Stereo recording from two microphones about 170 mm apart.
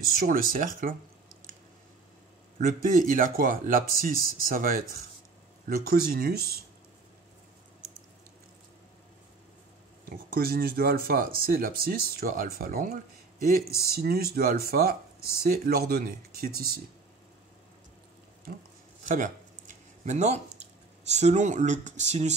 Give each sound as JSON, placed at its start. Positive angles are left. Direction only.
{"t": 0.0, "sound": "speech", "side_deg": -60}
{"t": 2.6, "sound": "speech", "side_deg": -55}
{"t": 10.0, "sound": "speech", "side_deg": -60}
{"t": 19.0, "sound": "speech", "side_deg": -45}